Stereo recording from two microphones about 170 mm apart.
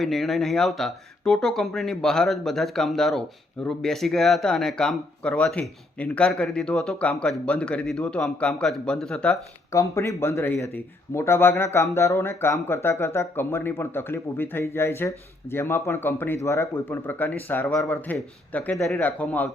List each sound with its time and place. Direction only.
0.0 s speech: centre (ahead or behind)
9.7 s speech: 15° left (ahead or behind)